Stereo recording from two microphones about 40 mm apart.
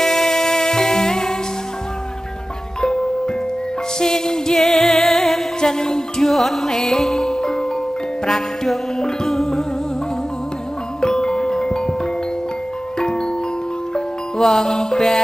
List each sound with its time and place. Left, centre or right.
0.0 s music: centre
2.8 s music: centre
9.0 s music: centre
11.0 s music: centre
13.9 s music: centre